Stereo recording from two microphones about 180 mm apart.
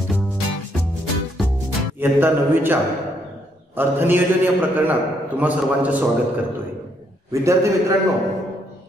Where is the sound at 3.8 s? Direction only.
10° right (ahead or behind).